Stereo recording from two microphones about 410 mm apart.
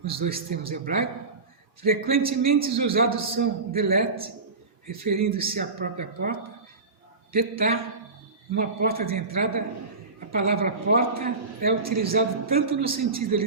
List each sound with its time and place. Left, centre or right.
0.0 s a man's voice: centre
10.3 s a man's voice: right